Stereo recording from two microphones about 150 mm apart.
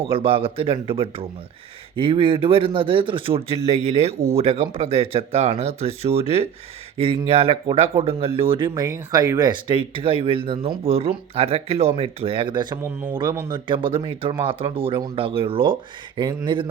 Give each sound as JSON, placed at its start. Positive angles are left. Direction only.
{"t": 0.0, "sound": "speech", "side_deg": -40}
{"t": 12.8, "sound": "speech", "side_deg": -15}
{"t": 13.5, "sound": "speech", "side_deg": -35}